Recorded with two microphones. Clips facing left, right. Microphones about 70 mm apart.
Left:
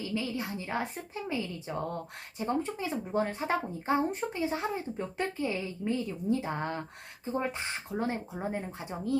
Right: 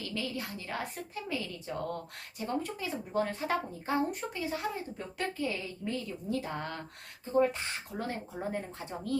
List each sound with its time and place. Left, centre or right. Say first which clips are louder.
0.0 s speech: left 3 dB; centre